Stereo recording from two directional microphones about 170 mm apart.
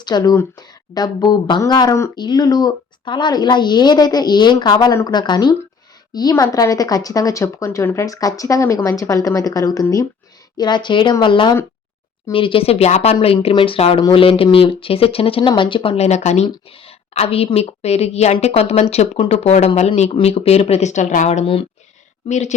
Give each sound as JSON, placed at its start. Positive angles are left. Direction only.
{"t": 0.0, "sound": "speech", "side_deg": 25}